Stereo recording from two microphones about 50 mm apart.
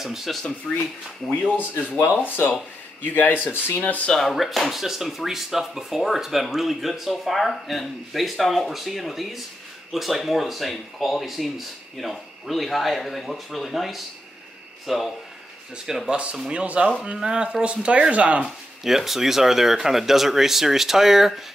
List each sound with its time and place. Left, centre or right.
0.0 s speech: centre
1.3 s speech: left
2.2 s speech: left
4.1 s speech: centre
16.1 s speech: right
18.9 s speech: centre